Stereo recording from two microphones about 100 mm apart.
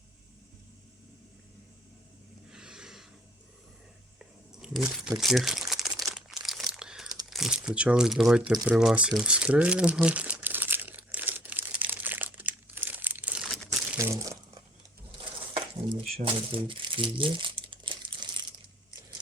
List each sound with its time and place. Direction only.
2.5 s a sound: 5° right (ahead or behind)
4.2 s crumpling: 5° right (ahead or behind)
5.9 s crumpling: 35° right (ahead or behind)
6.1 s crumpling: 5° right (ahead or behind)
7.3 s speech: 5° right (ahead or behind)
8.6 s crumpling: 5° right (ahead or behind)
14.0 s speech: 30° right (ahead or behind)
15.5 s crumpling: 65° right (ahead or behind)